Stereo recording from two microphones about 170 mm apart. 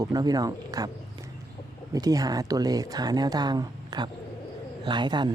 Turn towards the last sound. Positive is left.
turn(degrees=-25)  # may be behind; listen again after turning